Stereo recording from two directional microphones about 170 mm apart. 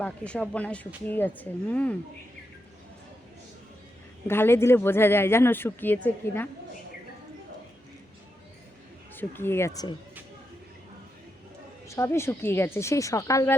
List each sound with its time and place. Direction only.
0.0 s speech: 10° left (ahead or behind)
4.3 s speech: 15° left (ahead or behind)
9.1 s speech: 15° left (ahead or behind)
11.9 s speech: 15° left (ahead or behind)